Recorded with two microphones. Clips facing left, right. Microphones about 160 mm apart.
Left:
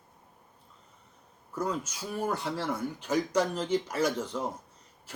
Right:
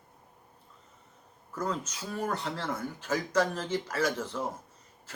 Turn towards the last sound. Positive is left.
turn(degrees=15)  # may be behind; listen again after turning